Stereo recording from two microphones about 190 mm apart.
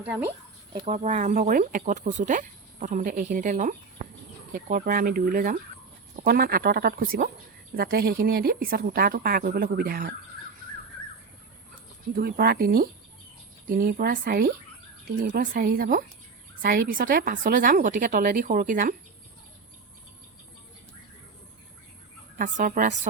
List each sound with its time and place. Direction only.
0.0 s speech: 10° right (ahead or behind)
0.9 s a woman's voice: 35° right (ahead or behind)
12.1 s a woman's voice: 55° right (ahead or behind)
22.4 s a woman's voice: 45° right (ahead or behind)